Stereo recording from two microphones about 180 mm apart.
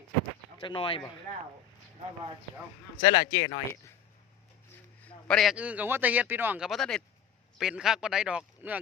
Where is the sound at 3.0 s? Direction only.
30° left (ahead or behind).